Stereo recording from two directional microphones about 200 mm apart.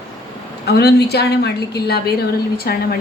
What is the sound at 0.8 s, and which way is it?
A woman's voice, 55° left (ahead or behind).